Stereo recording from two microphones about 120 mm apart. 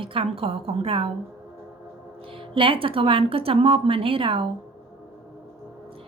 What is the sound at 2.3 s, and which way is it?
A woman's voice, 45° right (ahead or behind).